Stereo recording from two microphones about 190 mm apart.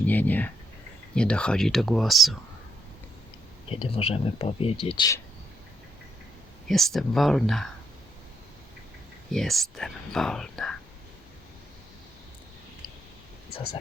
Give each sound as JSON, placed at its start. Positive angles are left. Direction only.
{"t": 0.0, "sound": "speech", "side_deg": 10}
{"t": 3.7, "sound": "speech", "side_deg": 30}
{"t": 6.7, "sound": "speech", "side_deg": 0}
{"t": 9.3, "sound": "speech", "side_deg": 0}